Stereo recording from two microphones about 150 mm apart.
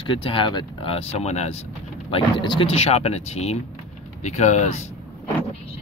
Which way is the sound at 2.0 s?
35° left (ahead or behind).